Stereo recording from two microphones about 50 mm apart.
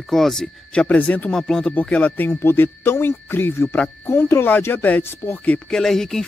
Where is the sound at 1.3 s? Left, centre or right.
Centre.